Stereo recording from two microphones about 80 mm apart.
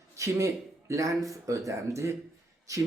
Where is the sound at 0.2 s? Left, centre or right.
Right.